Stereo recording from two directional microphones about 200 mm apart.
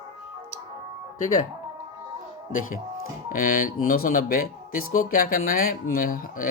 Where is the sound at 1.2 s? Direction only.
35° left (ahead or behind).